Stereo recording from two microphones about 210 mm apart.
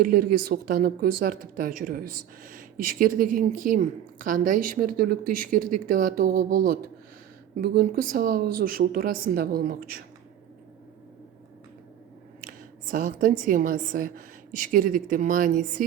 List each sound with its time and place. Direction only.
0.0 s speech: 45° right (ahead or behind)
12.4 s a woman's voice: 40° right (ahead or behind)